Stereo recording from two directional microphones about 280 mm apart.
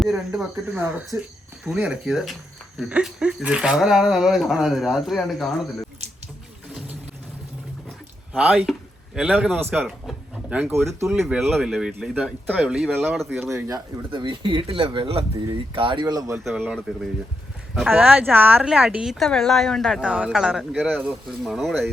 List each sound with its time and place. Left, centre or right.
0.0 s speech: centre
8.3 s speech: centre
16.4 s speech: centre